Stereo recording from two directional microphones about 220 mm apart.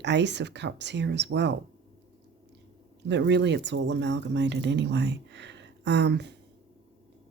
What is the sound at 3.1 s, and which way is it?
Speech, 55° right (ahead or behind).